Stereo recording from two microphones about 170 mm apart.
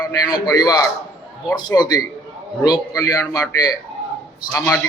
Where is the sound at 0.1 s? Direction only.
20° left (ahead or behind).